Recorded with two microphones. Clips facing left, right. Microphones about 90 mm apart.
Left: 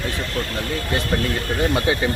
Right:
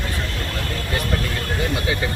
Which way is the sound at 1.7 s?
30° left (ahead or behind).